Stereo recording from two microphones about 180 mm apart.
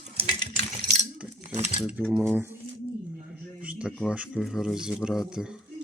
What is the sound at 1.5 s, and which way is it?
Speech, 40° right (ahead or behind).